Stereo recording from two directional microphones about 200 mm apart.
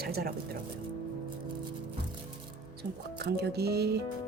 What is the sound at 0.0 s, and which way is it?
Speech, 50° right (ahead or behind).